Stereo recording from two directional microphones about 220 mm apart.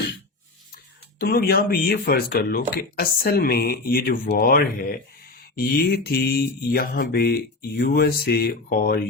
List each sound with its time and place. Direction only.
1.2 s speech: 45° left (ahead or behind)